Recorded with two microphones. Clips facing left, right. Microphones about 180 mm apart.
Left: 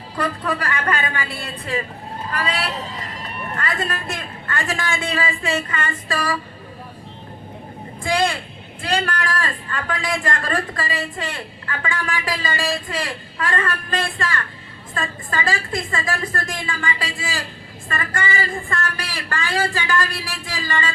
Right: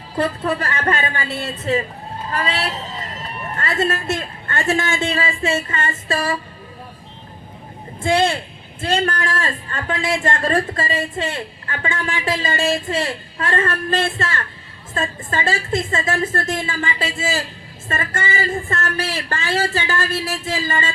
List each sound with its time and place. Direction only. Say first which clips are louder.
0.2 s speech: right 3 dB; 30° right (ahead or behind)
8.0 s speech: right 3 dB; 25° right (ahead or behind)